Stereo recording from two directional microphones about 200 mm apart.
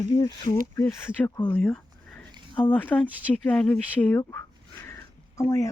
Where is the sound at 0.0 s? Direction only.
20° left (ahead or behind).